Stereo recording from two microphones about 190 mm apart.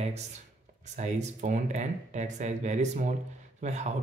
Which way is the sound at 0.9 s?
40° right (ahead or behind).